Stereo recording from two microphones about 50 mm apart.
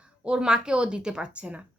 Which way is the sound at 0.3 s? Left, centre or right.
Centre.